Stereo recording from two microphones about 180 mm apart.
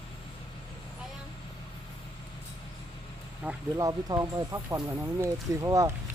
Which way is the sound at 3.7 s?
20° right (ahead or behind).